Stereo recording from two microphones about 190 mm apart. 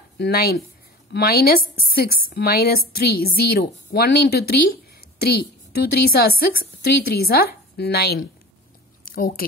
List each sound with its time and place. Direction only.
0.2 s a woman's voice: 55° left (ahead or behind)